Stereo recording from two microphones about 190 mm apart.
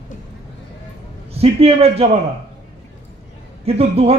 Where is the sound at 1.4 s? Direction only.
30° right (ahead or behind).